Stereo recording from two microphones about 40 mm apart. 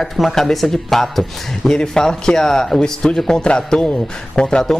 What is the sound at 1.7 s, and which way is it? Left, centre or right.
Speech, centre.